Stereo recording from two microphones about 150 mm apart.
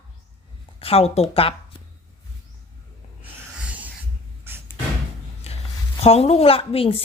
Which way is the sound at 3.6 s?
10° right (ahead or behind).